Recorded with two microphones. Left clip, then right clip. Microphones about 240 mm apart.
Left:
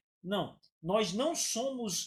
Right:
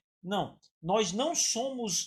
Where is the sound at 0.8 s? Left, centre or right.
Right.